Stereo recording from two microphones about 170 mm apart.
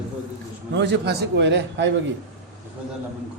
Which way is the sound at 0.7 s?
90° right.